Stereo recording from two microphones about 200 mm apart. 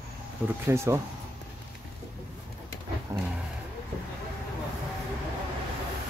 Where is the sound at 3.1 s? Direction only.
15° right (ahead or behind).